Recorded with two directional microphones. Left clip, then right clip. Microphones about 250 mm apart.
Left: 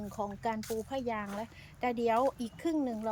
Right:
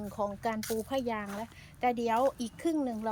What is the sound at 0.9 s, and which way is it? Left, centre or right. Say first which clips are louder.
Speech: right 2 dB; centre.